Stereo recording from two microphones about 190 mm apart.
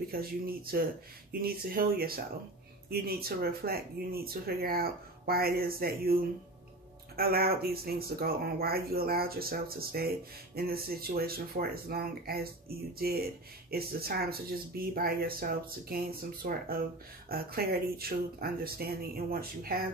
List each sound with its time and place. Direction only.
0.1 s speech: 50° right (ahead or behind)
7.2 s speech: 55° right (ahead or behind)